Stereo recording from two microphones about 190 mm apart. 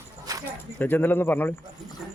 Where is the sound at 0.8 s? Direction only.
10° left (ahead or behind).